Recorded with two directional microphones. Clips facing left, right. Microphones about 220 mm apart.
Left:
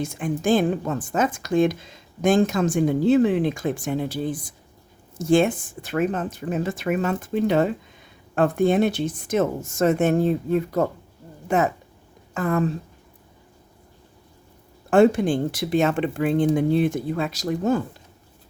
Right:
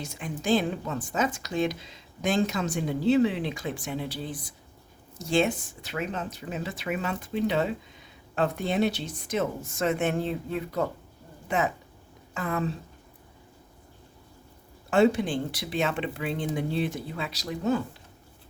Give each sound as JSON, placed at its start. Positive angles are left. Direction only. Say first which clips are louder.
{"t": 0.0, "sound": "a woman's voice", "louder": "left 8 dB", "side_deg": 50}
{"t": 14.8, "sound": "a woman's voice", "louder": "left 6 dB", "side_deg": 50}